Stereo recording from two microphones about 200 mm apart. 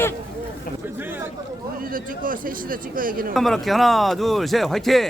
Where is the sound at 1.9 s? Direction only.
45° right (ahead or behind).